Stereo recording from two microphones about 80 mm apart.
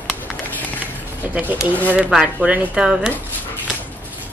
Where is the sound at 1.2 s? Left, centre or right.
Right.